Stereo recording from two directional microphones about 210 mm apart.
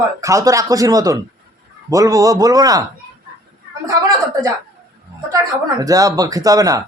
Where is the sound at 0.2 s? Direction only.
15° right (ahead or behind).